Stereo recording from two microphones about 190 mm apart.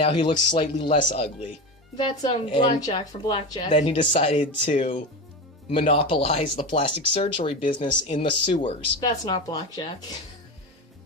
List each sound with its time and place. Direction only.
0.0 s speech: 25° left (ahead or behind)
3.8 s speech: 35° left (ahead or behind)
5.7 s speech: 30° left (ahead or behind)